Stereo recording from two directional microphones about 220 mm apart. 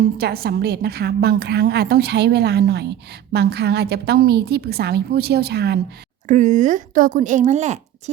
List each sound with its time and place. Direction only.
0.2 s a woman's voice: 45° right (ahead or behind)
6.2 s a woman's voice: 35° right (ahead or behind)